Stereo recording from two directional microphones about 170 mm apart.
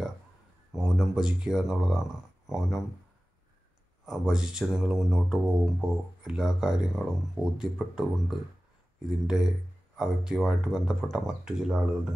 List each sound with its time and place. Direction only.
0.7 s speech: centre (ahead or behind)
4.0 s speech: 5° right (ahead or behind)